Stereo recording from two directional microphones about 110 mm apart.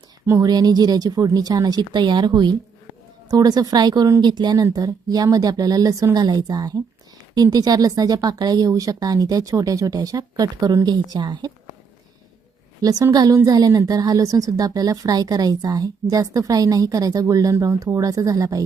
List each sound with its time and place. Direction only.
0.3 s a woman's voice: 30° right (ahead or behind)
12.8 s a woman's voice: 35° right (ahead or behind)